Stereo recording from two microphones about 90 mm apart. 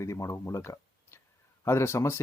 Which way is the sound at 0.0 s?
35° left (ahead or behind).